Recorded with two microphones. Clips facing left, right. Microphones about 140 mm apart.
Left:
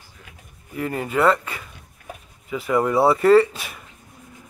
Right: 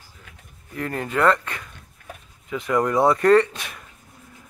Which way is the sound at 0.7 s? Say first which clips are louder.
Left 2 dB; 5° left (ahead or behind).